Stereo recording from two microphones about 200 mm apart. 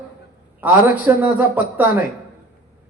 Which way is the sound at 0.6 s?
10° right (ahead or behind).